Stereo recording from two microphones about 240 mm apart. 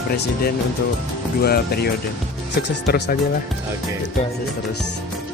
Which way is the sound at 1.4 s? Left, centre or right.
Left.